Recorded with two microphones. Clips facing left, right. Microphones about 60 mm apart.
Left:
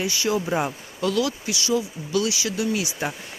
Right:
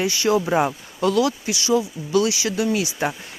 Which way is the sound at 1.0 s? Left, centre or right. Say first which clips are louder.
Right 4 dB; right.